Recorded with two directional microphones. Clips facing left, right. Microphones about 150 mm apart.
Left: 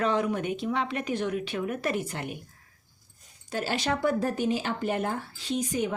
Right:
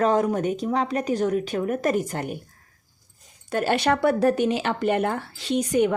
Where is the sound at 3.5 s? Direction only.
60° right (ahead or behind).